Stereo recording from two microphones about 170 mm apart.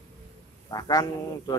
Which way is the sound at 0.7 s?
20° left (ahead or behind).